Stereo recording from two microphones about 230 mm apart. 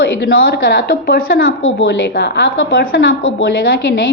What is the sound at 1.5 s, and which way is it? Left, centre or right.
A woman's voice, left.